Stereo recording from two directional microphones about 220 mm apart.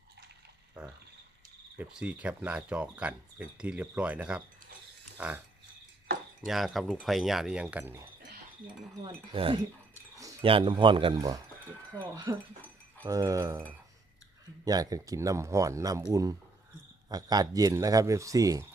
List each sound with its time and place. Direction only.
0.8 s speech: 5° right (ahead or behind)
6.4 s speech: centre (ahead or behind)
8.6 s speech: 25° right (ahead or behind)
17.1 s speech: 15° right (ahead or behind)